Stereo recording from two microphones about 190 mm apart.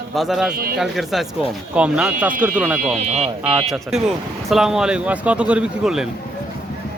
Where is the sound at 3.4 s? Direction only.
5° right (ahead or behind).